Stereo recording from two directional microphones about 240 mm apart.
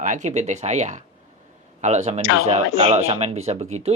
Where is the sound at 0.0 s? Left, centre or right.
Right.